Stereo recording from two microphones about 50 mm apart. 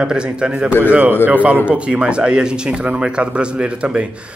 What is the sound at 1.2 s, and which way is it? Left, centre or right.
Speech, right.